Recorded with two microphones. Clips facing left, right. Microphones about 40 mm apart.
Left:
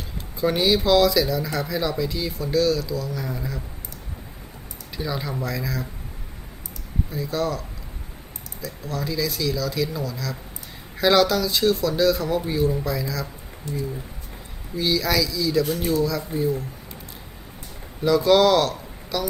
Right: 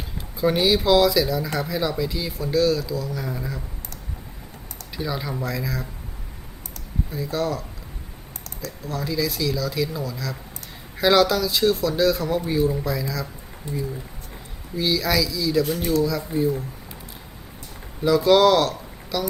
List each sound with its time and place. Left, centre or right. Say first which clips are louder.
0.3 s speech: right 1 dB; centre
4.9 s speech: even; centre
7.1 s speech: even; centre
8.8 s speech: right 1 dB; centre
13.6 s speech: even; right
14.8 s speech: even; centre
18.0 s speech: right 1 dB; centre